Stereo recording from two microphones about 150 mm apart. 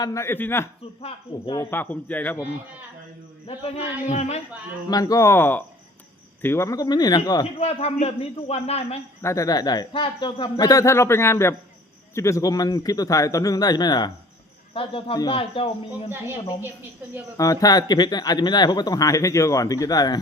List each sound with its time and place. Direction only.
0.0 s a man's voice: 20° left (ahead or behind)
4.1 s speech: 45° left (ahead or behind)
4.9 s speech: 25° left (ahead or behind)
7.6 s speech: 40° left (ahead or behind)
9.2 s speech: 20° left (ahead or behind); by 16.0 s 35° left (ahead or behind)
16.0 s speech: 15° right (ahead or behind)
17.3 s speech: 20° left (ahead or behind)